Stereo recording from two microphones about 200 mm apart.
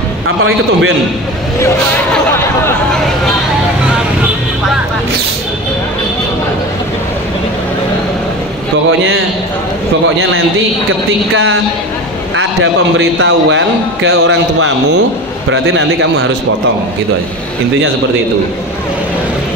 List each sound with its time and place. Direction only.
0.4 s a man's voice: 85° right
12.9 s a man's voice: 70° right (ahead or behind)